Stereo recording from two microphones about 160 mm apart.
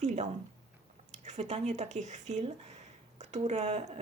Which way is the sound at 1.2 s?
45° right (ahead or behind).